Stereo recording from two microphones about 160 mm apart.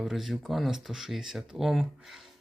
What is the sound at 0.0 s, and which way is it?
Speech, centre (ahead or behind).